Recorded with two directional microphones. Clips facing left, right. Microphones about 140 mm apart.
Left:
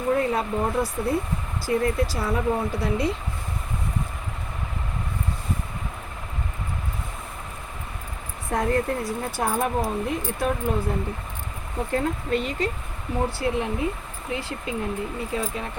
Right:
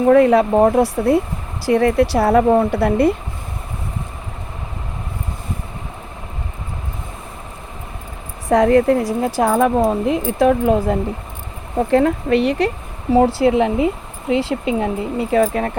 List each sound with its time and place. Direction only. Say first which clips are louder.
0.0 s speech: right 12 dB; 85° right; by 3.2 s 60° right (ahead or behind)
8.4 s speech: right 11 dB; 90° right; by 15.7 s 65° right (ahead or behind)